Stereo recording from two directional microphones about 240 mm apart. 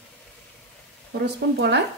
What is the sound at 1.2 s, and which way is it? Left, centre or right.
Speech, right.